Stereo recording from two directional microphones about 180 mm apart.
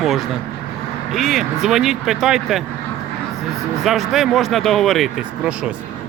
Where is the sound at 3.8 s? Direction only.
Centre (ahead or behind).